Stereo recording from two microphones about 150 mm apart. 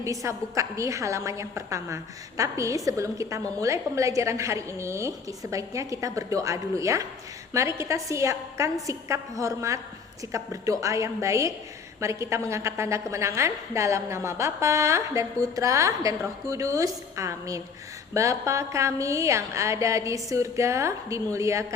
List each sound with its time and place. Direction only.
0.0 s a woman's voice: 20° right (ahead or behind)